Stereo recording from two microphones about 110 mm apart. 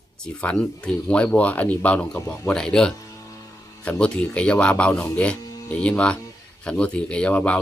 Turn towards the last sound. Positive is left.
turn(degrees=15)  # may be behind; listen again after turning